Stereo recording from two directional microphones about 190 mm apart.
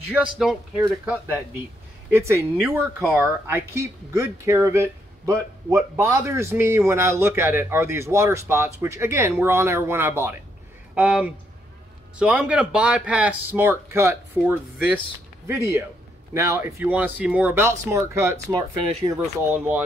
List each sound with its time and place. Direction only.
0.1 s a man's voice: 5° right (ahead or behind)